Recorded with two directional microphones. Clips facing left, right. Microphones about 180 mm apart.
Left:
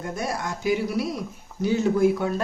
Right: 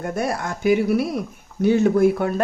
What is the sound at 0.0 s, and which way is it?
Speech, 60° right (ahead or behind).